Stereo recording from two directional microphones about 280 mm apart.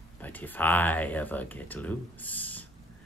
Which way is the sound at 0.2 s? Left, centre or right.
Centre.